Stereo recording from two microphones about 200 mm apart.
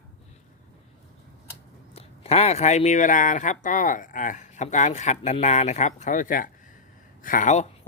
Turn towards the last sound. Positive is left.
turn(degrees=35)  # may be behind; listen again after turning